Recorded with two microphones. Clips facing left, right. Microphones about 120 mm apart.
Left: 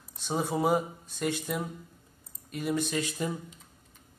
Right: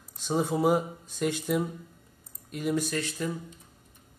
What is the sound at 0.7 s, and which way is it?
Speech, 10° right (ahead or behind).